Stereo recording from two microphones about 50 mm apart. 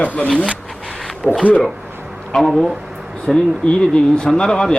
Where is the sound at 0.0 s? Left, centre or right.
Left.